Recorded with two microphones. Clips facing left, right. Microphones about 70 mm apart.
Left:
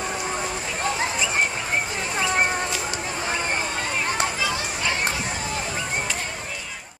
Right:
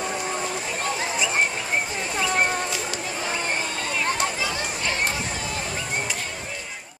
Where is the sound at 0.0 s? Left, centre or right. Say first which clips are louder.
Even; centre.